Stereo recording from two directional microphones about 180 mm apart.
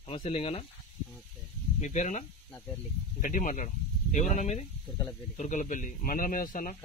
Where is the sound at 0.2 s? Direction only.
30° left (ahead or behind).